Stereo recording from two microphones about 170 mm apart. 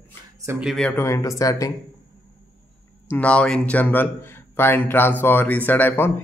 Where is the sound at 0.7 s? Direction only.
10° left (ahead or behind).